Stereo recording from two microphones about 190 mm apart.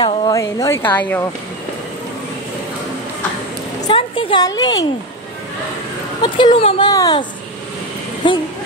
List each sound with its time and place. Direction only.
0.0 s a woman's voice: 20° left (ahead or behind)
3.8 s a sound: 25° left (ahead or behind)
6.2 s speech: 25° left (ahead or behind)